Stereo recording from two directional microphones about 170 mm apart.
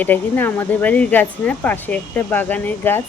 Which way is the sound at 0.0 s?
10° left (ahead or behind).